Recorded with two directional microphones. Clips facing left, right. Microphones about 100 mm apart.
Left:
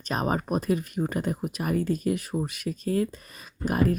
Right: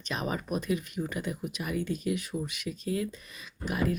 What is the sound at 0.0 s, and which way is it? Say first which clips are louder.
Speech: left 6 dB; 45° left (ahead or behind).